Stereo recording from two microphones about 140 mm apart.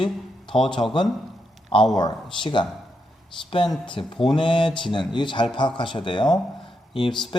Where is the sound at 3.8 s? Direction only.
35° left (ahead or behind).